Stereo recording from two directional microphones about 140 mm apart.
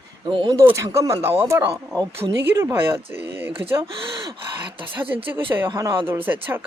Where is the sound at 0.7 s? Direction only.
20° right (ahead or behind).